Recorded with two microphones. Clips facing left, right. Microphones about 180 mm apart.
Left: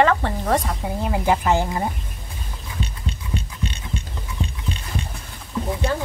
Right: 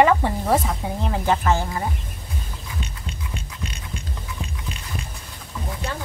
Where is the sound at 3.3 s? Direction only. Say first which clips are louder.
Left 5 dB; 30° left (ahead or behind).